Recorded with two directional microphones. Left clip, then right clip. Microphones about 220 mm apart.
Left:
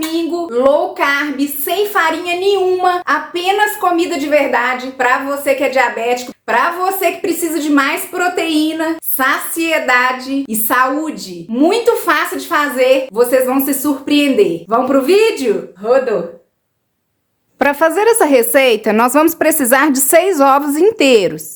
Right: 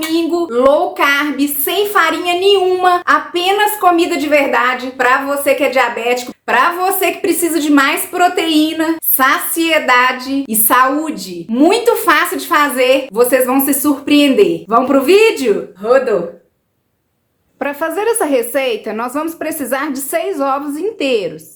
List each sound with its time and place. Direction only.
0.1 s a woman's voice: 15° right (ahead or behind)
17.6 s speech: 30° left (ahead or behind)